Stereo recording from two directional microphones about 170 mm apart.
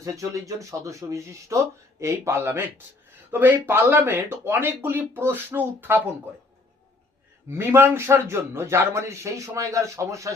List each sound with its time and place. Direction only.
0.0 s a man's voice: 20° right (ahead or behind)
7.4 s a man's voice: 15° right (ahead or behind)